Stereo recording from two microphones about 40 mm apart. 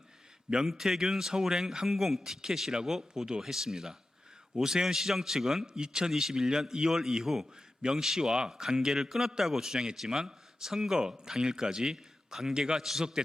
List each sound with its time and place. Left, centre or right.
0.7 s speech: centre
5.6 s speech: centre